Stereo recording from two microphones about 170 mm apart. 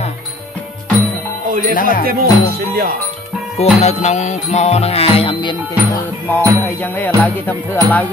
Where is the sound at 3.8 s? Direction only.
40° left (ahead or behind).